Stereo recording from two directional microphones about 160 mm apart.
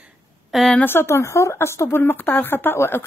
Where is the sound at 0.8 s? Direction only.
15° left (ahead or behind).